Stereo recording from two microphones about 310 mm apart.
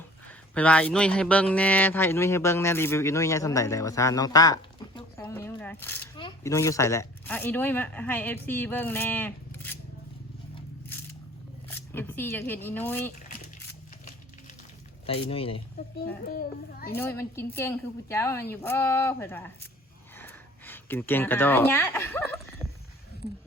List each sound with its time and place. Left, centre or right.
0.3 s a man's voice: centre
11.7 s speech: centre
15.0 s a man's voice: centre
16.2 s a child's voice: left
17.0 s a man's voice: centre
20.1 s a sound: centre